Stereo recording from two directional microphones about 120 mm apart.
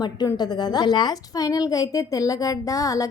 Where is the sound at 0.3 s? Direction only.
35° left (ahead or behind).